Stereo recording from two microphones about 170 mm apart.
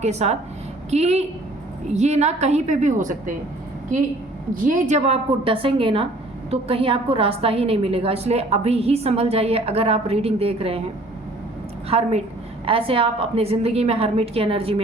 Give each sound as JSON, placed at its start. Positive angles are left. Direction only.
{"t": 0.0, "sound": "a woman's voice", "side_deg": -40}
{"t": 4.6, "sound": "a woman's voice", "side_deg": -45}
{"t": 11.9, "sound": "a woman's voice", "side_deg": -35}